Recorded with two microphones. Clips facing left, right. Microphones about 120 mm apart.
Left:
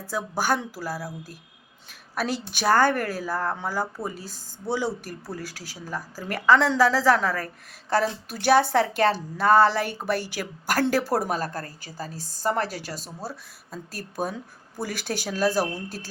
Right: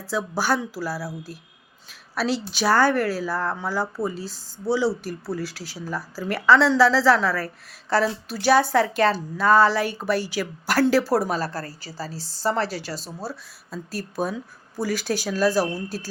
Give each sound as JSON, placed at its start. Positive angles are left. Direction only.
{"t": 0.3, "sound": "speech", "side_deg": 50}
{"t": 2.1, "sound": "a woman's voice", "side_deg": 50}
{"t": 11.4, "sound": "a woman's voice", "side_deg": -35}
{"t": 12.1, "sound": "speech", "side_deg": 50}